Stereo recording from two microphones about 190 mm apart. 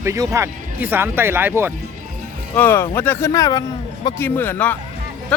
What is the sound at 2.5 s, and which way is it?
A man's voice, 10° left (ahead or behind).